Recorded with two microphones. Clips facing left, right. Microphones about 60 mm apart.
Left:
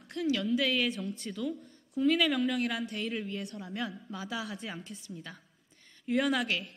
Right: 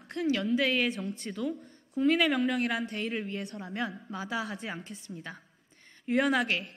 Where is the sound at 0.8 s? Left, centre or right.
Right.